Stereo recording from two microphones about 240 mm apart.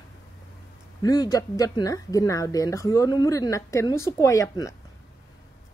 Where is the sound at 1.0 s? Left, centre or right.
Centre.